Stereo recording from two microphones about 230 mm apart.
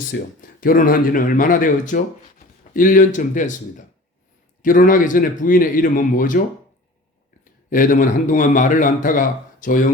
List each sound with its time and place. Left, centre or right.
0.1 s a man's voice: left
7.7 s a man's voice: left